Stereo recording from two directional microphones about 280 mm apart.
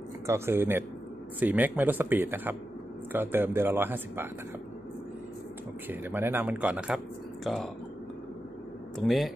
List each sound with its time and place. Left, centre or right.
0.3 s speech: centre
5.9 s speech: centre
8.9 s speech: centre